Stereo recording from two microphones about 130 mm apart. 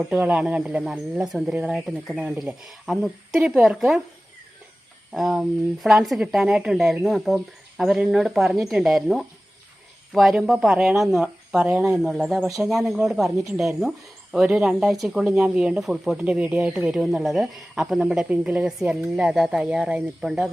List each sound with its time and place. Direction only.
0.0 s speech: 5° right (ahead or behind)
5.1 s speech: 5° right (ahead or behind)